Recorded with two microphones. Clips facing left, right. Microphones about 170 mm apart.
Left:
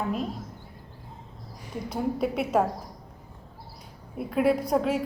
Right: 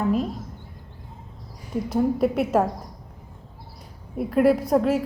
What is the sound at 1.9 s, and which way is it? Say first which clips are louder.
Speech: right 6 dB; 5° right (ahead or behind).